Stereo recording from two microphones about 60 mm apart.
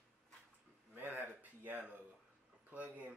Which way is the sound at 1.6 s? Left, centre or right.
Right.